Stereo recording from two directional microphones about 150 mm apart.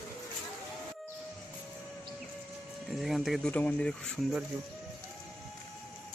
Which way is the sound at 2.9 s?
Centre (ahead or behind).